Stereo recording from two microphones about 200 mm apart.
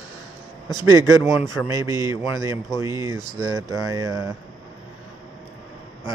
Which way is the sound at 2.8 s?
15° right (ahead or behind).